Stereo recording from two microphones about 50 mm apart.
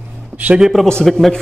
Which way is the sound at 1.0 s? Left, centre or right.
Centre.